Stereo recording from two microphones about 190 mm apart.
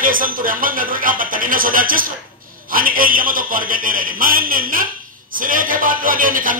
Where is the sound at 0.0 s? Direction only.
45° right (ahead or behind).